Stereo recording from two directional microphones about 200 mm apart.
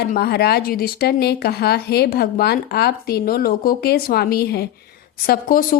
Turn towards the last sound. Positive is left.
turn(degrees=45)  # may be behind; listen again after turning